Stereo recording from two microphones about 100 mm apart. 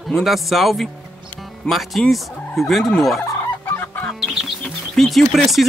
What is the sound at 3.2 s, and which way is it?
Chicken, 25° left (ahead or behind).